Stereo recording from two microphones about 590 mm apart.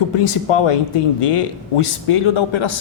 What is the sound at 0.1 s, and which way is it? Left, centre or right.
Speech, left.